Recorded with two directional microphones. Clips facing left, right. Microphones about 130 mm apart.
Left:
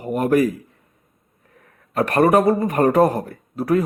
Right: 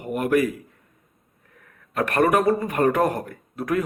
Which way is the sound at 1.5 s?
35° left (ahead or behind).